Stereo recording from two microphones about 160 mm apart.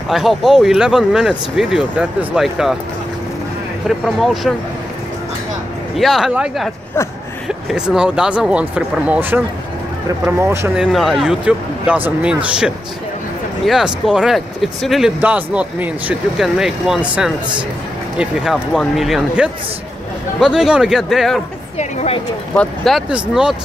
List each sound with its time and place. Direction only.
0.1 s speech: centre (ahead or behind)
3.8 s speech: centre (ahead or behind)
5.9 s speech: centre (ahead or behind)
10.8 s speech: centre (ahead or behind)
21.7 s speech: 45° left (ahead or behind)
22.6 s speech: centre (ahead or behind)